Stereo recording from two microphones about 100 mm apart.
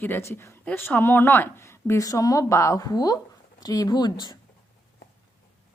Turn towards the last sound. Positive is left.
turn(degrees=45)  # may be behind; listen again after turning